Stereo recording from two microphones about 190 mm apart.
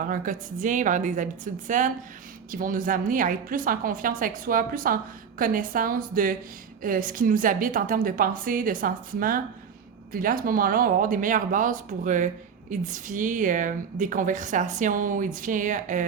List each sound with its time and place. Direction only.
0.0 s a woman's voice: 45° right (ahead or behind)